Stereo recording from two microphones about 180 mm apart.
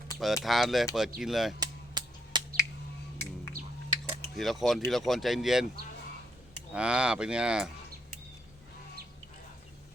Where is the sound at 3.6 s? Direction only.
50° right (ahead or behind).